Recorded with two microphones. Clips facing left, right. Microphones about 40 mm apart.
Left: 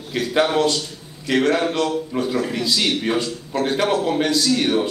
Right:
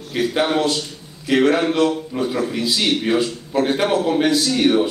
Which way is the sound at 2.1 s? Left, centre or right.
Centre.